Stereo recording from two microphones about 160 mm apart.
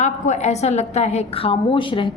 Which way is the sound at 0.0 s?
45° left (ahead or behind).